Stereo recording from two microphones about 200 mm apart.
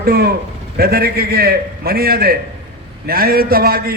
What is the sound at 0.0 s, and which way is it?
A man's voice, 50° right (ahead or behind).